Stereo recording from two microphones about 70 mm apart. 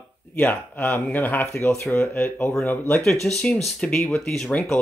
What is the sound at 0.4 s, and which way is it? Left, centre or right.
Speech, left.